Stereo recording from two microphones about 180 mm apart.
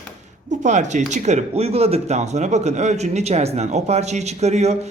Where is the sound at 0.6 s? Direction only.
40° right (ahead or behind).